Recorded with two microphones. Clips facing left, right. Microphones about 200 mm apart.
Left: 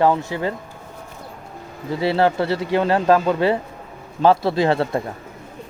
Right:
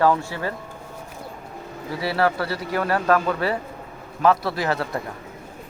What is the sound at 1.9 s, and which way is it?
Speech, 25° left (ahead or behind).